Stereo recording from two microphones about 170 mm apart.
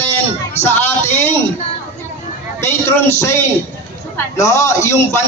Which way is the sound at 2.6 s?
15° left (ahead or behind).